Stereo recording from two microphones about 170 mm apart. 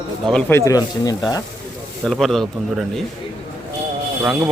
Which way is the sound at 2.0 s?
Centre (ahead or behind).